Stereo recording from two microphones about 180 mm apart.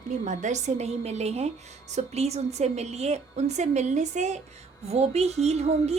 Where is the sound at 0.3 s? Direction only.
40° right (ahead or behind).